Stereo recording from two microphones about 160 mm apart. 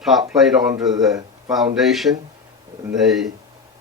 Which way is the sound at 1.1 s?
20° right (ahead or behind).